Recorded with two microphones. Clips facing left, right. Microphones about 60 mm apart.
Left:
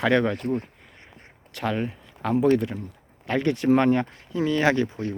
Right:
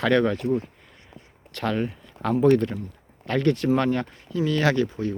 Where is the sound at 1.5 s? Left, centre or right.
Centre.